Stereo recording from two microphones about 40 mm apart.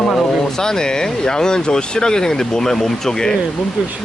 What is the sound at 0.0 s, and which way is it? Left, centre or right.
Speech, centre.